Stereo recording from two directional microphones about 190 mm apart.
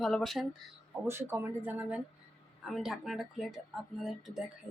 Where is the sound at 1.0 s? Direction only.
15° right (ahead or behind).